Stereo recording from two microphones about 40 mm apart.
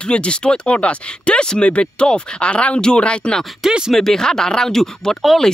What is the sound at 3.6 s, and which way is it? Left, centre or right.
Speech, centre.